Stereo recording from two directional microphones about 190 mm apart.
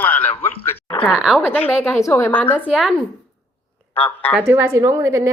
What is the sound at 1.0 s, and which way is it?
Speech, centre (ahead or behind).